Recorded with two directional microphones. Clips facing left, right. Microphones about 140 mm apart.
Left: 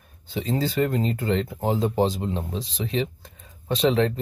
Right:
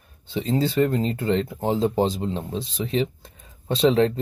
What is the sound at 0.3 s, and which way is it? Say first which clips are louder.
Speech: right 2 dB; 25° right (ahead or behind).